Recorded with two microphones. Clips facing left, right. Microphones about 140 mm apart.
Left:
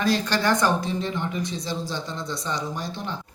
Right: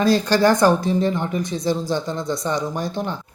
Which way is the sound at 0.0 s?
35° right (ahead or behind).